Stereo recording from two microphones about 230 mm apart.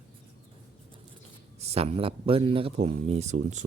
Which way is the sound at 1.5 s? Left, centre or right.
Right.